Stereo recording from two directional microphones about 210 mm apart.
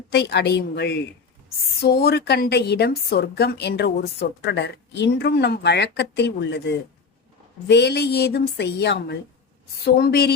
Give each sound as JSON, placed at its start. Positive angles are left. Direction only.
{"t": 0.1, "sound": "a woman's voice", "side_deg": 50}